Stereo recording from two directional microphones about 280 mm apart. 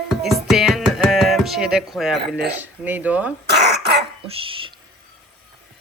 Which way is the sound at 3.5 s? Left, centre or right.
Right.